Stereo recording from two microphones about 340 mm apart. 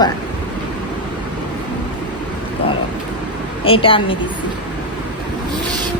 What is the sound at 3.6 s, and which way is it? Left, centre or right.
Speech, centre.